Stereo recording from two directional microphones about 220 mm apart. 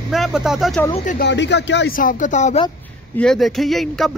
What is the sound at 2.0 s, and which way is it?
Speech, 35° left (ahead or behind).